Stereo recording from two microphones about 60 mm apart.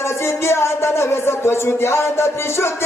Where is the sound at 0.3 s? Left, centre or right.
Left.